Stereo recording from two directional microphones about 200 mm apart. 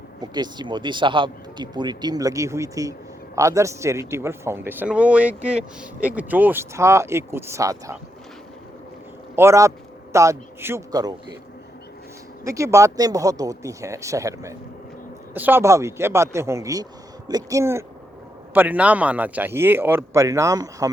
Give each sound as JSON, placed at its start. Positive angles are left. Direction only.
{"t": 0.2, "sound": "speech", "side_deg": -20}
{"t": 9.3, "sound": "a man's voice", "side_deg": -15}
{"t": 12.5, "sound": "speech", "side_deg": -15}